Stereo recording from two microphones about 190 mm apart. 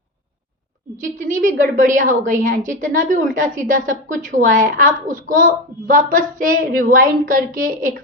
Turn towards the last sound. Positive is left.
turn(degrees=-45)  # may be behind; listen again after turning